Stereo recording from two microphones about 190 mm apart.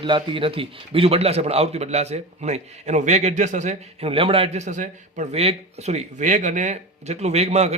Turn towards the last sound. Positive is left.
turn(degrees=-35)  # may be behind; listen again after turning